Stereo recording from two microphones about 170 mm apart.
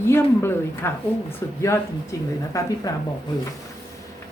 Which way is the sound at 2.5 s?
20° left (ahead or behind).